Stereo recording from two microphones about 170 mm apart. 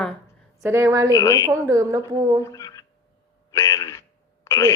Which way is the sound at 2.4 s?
20° left (ahead or behind).